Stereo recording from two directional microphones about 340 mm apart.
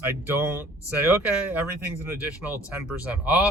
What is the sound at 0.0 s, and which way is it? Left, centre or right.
Speech, centre.